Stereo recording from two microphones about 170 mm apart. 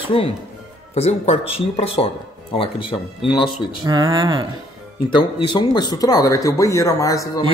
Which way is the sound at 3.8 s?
25° right (ahead or behind).